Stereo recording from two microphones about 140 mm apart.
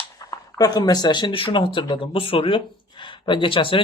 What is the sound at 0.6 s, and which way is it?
Speech, 30° left (ahead or behind).